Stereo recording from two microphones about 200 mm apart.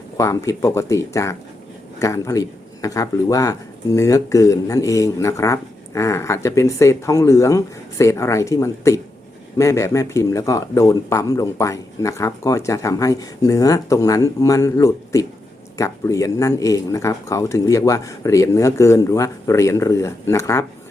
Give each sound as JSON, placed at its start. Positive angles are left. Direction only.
{"t": 0.2, "sound": "speech", "side_deg": 15}